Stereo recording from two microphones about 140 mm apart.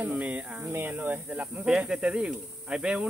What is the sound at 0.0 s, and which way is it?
Speech, 10° right (ahead or behind).